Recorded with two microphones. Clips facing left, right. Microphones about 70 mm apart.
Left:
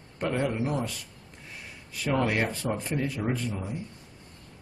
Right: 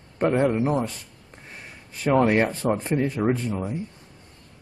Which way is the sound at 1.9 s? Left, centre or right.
Right.